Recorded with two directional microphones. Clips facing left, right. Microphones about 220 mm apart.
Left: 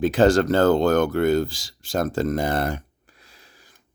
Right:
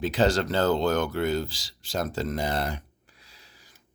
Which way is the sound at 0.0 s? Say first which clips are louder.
Left 7 dB; 50° left (ahead or behind).